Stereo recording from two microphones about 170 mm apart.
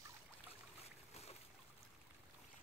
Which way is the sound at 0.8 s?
40° left (ahead or behind).